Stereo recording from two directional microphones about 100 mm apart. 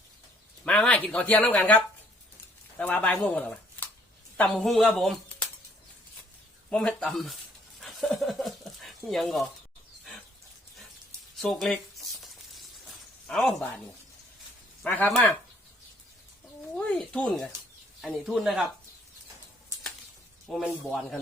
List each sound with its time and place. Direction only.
0.6 s speech: 15° left (ahead or behind)
6.7 s speech: 10° left (ahead or behind)
7.8 s a sound: centre (ahead or behind)
11.3 s speech: centre (ahead or behind)
11.7 s a sound: centre (ahead or behind)
14.8 s speech: 20° left (ahead or behind)
16.7 s speech: 5° left (ahead or behind)
20.5 s speech: centre (ahead or behind)